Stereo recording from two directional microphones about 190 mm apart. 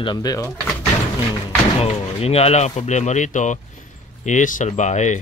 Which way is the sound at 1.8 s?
30° left (ahead or behind).